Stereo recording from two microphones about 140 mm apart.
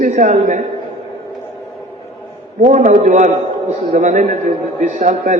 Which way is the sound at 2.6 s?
60° right (ahead or behind).